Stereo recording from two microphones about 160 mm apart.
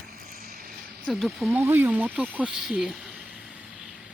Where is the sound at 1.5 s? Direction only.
15° right (ahead or behind).